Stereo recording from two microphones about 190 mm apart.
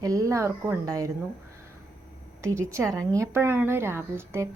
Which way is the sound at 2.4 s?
15° right (ahead or behind).